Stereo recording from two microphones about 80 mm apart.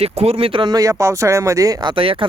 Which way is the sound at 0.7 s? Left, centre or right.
Right.